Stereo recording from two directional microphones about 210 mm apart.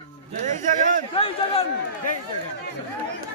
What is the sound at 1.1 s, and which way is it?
Speech, 25° left (ahead or behind).